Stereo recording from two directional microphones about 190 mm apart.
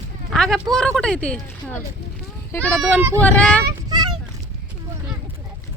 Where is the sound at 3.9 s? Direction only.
20° right (ahead or behind).